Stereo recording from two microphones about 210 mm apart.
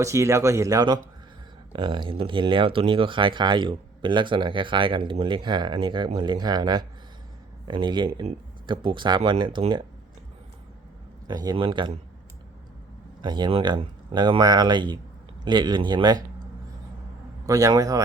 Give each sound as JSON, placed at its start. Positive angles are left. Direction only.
{"t": 0.0, "sound": "speech", "side_deg": -15}
{"t": 11.3, "sound": "speech", "side_deg": -20}
{"t": 13.2, "sound": "speech", "side_deg": -20}
{"t": 17.4, "sound": "speech", "side_deg": -15}